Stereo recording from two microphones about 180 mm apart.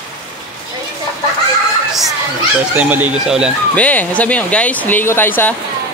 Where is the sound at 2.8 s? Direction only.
10° right (ahead or behind).